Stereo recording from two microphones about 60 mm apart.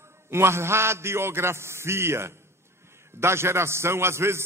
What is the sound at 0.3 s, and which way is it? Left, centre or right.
A man's voice, right.